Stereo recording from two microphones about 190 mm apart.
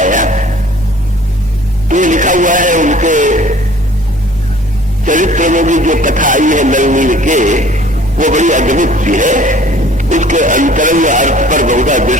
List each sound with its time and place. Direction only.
0.0 s a sound: 40° right (ahead or behind)
1.9 s radio: 40° right (ahead or behind)
5.0 s music: 40° right (ahead or behind)